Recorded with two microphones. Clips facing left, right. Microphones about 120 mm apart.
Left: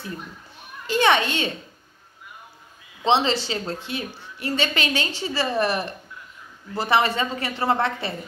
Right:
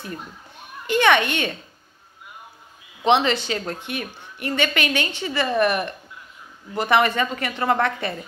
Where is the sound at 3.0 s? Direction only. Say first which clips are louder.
Right 2 dB; 25° left (ahead or behind).